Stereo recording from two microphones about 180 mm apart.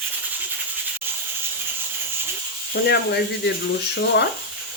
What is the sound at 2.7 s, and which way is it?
Speech, 65° left (ahead or behind).